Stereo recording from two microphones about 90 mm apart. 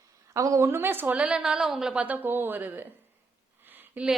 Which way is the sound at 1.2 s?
10° right (ahead or behind).